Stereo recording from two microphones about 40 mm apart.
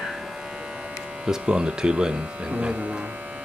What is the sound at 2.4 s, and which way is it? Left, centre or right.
Speech, right.